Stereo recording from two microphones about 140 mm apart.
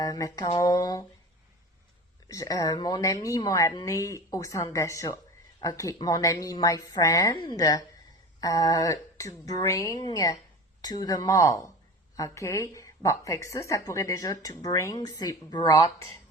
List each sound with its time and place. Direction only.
0.0 s speech: 25° left (ahead or behind)
2.2 s speech: 25° left (ahead or behind)
8.4 s a sound: 25° left (ahead or behind)
9.5 s speech: 25° left (ahead or behind)